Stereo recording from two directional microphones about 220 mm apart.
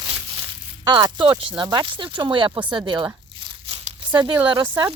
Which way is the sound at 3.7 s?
20° right (ahead or behind).